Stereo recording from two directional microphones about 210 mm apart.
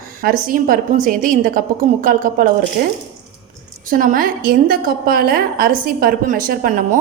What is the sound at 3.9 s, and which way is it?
A woman's voice, 40° right (ahead or behind).